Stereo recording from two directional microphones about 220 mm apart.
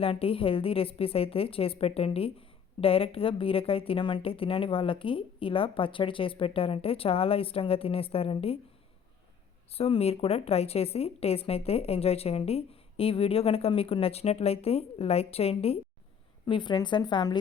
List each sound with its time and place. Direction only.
0.0 s speech: 25° left (ahead or behind)
9.7 s speech: 25° left (ahead or behind)